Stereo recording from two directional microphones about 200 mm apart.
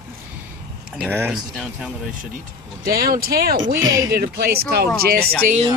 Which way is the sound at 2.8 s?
50° right (ahead or behind).